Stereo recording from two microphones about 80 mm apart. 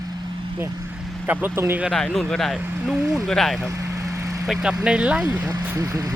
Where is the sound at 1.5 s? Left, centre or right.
Right.